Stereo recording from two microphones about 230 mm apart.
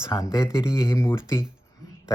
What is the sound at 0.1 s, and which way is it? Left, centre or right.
Speech, centre.